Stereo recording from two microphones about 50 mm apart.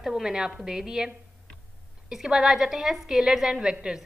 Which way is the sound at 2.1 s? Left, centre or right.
Centre.